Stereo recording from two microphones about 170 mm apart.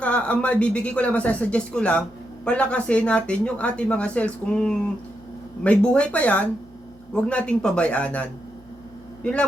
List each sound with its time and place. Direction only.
0.0 s speech: 10° left (ahead or behind)